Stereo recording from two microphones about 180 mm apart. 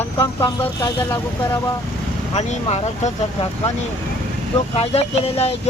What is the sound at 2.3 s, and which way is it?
Speech, 35° left (ahead or behind).